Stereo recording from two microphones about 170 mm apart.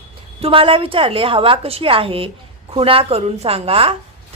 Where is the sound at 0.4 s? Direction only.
30° right (ahead or behind).